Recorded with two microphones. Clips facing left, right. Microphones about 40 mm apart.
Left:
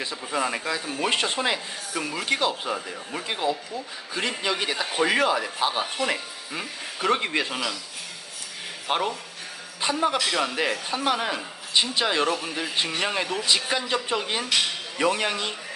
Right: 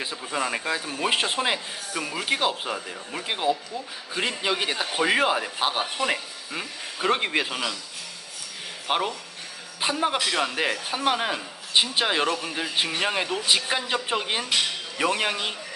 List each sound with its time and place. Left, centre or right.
0.0 s speech: centre
2.7 s speech: centre
3.2 s speech: centre
5.2 s speech: right
6.1 s speech: centre
8.9 s a man's voice: centre